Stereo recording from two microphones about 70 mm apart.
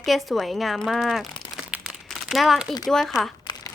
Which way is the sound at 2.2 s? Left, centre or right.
Centre.